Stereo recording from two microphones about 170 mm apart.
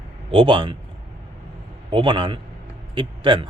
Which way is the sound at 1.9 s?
30° right (ahead or behind).